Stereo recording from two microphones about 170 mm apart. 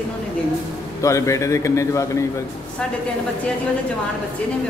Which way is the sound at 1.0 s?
20° left (ahead or behind).